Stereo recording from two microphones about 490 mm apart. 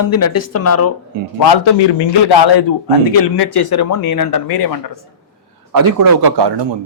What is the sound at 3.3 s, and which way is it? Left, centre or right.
Speech, left.